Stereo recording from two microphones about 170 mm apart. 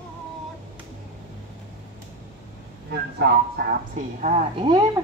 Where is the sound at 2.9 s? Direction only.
70° right (ahead or behind).